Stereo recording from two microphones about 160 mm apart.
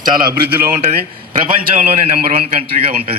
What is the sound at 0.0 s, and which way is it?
Speech, 65° right (ahead or behind).